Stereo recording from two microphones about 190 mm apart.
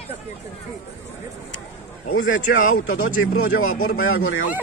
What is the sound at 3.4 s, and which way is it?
Speech, 90° left.